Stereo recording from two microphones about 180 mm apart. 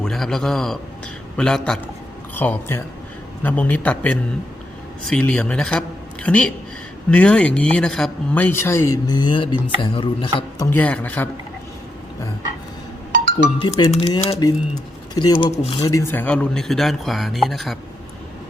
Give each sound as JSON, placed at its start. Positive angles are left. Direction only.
{"t": 0.0, "sound": "speech", "side_deg": 5}
{"t": 10.6, "sound": "speech", "side_deg": 10}
{"t": 13.6, "sound": "speech", "side_deg": 25}